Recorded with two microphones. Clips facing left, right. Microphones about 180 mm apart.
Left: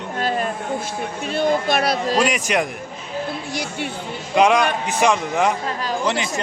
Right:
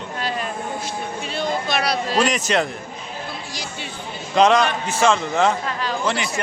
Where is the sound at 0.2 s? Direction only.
45° left (ahead or behind).